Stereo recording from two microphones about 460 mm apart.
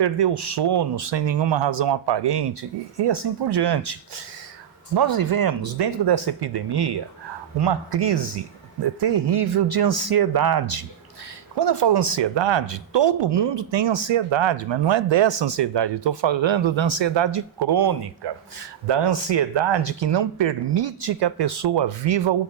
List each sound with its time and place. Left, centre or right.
0.0 s speech: right
4.9 s speech: right
11.6 s speech: right